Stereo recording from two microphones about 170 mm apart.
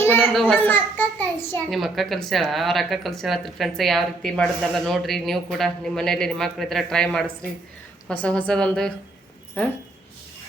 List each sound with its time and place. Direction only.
0.0 s a sound: 10° left (ahead or behind)
0.3 s speech: centre (ahead or behind)
0.6 s a child's voice: 10° left (ahead or behind)
1.7 s speech: centre (ahead or behind)